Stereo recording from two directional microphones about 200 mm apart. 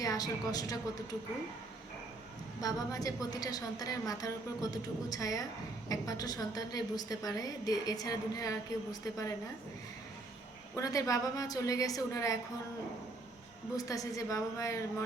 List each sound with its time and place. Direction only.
0.0 s a woman's voice: 20° left (ahead or behind)
2.6 s a woman's voice: 15° left (ahead or behind)
10.8 s a woman's voice: 15° left (ahead or behind)
13.7 s a woman's voice: 15° left (ahead or behind)